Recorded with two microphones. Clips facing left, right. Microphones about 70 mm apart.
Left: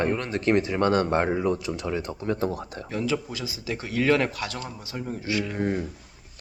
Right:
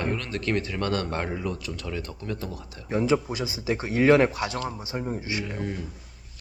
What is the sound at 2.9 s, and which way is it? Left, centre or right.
Speech, right.